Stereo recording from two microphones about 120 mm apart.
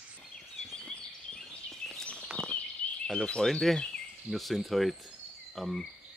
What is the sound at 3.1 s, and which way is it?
Speech, 5° left (ahead or behind).